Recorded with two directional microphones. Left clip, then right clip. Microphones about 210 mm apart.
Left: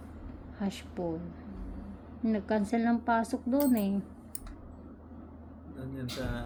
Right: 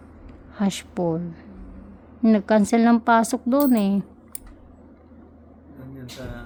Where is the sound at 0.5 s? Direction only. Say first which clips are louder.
Right 11 dB; 60° right (ahead or behind).